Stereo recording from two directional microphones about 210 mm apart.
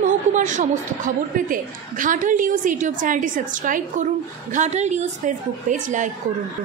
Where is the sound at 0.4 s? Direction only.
40° right (ahead or behind).